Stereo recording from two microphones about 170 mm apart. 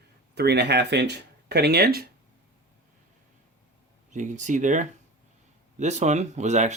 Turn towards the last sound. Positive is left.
turn(degrees=-45)  # may be behind; listen again after turning